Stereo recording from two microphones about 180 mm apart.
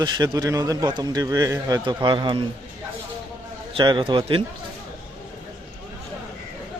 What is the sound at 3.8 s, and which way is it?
Speech, 25° right (ahead or behind).